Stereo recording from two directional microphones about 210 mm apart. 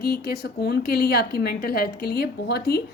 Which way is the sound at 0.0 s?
45° left (ahead or behind).